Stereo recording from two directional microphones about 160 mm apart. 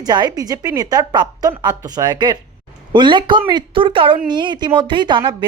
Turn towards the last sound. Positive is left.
turn(degrees=-30)  # may be behind; listen again after turning